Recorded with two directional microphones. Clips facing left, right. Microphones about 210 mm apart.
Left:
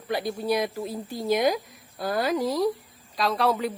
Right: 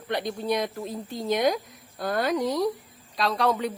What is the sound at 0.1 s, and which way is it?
A woman's voice, 5° left (ahead or behind).